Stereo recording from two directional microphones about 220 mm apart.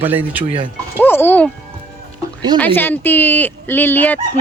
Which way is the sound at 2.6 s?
10° left (ahead or behind).